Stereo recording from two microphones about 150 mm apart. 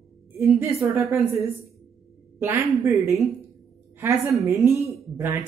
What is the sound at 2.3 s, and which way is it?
Speech, 15° right (ahead or behind).